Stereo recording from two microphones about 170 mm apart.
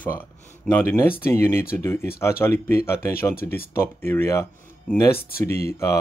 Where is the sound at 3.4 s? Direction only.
60° left (ahead or behind).